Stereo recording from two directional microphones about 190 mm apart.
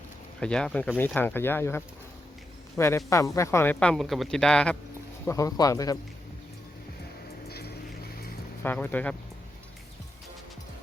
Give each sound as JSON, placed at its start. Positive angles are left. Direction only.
{"t": 0.3, "sound": "speech", "side_deg": 5}
{"t": 5.2, "sound": "speech", "side_deg": 15}
{"t": 7.4, "sound": "vehicle", "side_deg": 55}
{"t": 8.6, "sound": "speech", "side_deg": 10}